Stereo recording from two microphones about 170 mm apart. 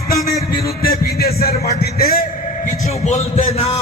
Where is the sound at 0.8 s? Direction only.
65° left (ahead or behind).